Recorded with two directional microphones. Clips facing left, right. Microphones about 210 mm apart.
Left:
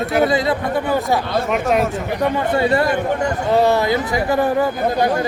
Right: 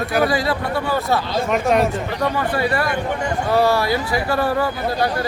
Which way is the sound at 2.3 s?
25° left (ahead or behind).